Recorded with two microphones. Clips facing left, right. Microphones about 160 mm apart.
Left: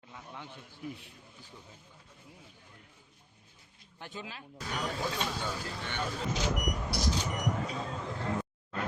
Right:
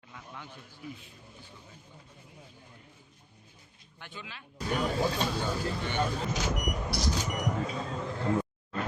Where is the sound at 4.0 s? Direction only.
40° left (ahead or behind).